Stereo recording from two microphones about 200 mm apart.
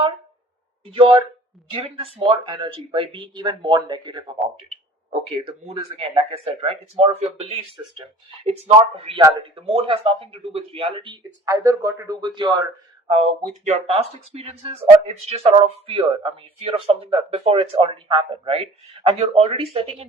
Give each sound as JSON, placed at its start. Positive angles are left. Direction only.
{"t": 1.7, "sound": "speech", "side_deg": -30}
{"t": 5.5, "sound": "speech", "side_deg": -30}
{"t": 13.1, "sound": "speech", "side_deg": -35}